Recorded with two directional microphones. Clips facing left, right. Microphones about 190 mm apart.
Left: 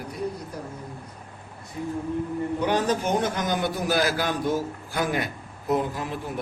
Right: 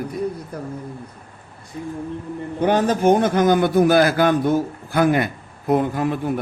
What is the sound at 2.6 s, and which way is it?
A man's voice, 50° right (ahead or behind).